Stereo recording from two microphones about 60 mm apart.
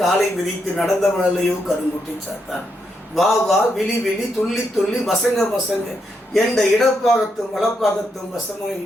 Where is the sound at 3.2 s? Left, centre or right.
Centre.